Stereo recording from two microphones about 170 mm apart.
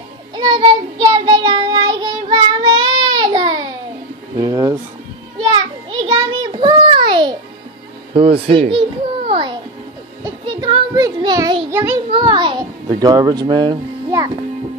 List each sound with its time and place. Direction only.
0.4 s child singing: 25° right (ahead or behind)
4.4 s a sound: 20° right (ahead or behind)
8.1 s speech: 35° right (ahead or behind)
9.3 s music: 30° right (ahead or behind)
10.4 s child singing: 30° right (ahead or behind); by 12.0 s 15° right (ahead or behind)
12.1 s a sound: 25° right (ahead or behind)